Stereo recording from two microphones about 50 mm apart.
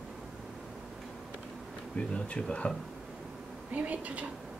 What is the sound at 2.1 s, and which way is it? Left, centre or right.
Speech, left.